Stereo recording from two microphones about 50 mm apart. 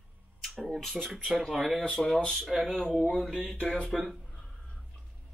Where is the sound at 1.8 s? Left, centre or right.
Centre.